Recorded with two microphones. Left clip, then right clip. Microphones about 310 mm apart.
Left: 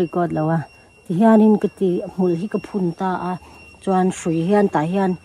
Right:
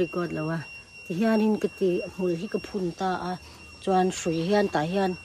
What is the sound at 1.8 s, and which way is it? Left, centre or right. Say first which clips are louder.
Speech: left 6 dB; left.